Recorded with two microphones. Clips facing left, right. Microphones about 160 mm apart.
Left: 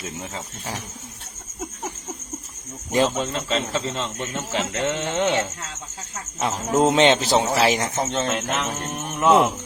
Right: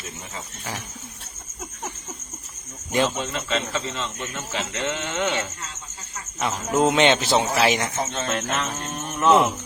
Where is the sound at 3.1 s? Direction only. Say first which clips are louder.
Left 2 dB; 30° left (ahead or behind).